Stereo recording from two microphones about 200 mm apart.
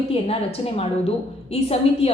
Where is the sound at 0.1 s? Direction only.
30° left (ahead or behind).